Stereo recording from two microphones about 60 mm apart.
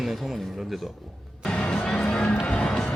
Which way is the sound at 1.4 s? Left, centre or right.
Centre.